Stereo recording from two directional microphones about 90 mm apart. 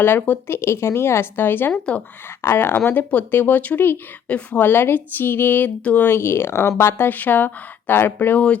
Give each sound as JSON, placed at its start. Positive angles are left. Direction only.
{"t": 0.0, "sound": "speech", "side_deg": 20}